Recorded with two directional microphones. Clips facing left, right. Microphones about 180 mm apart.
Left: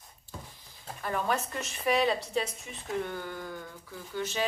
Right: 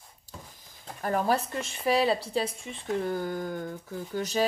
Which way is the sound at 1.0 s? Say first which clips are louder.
Right 4 dB; 40° right (ahead or behind).